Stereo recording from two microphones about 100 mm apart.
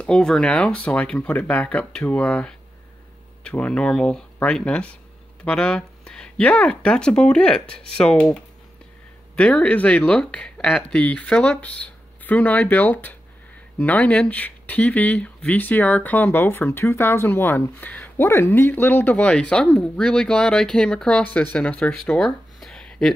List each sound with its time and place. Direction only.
0.0 s speech: 10° left (ahead or behind)